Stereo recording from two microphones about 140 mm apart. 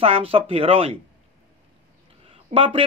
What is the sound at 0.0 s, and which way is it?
Speech, 40° right (ahead or behind).